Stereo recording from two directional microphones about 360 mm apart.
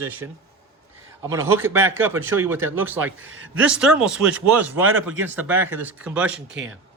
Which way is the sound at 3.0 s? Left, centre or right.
Right.